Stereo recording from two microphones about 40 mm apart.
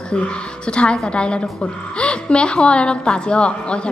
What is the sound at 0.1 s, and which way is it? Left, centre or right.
A woman's voice, left.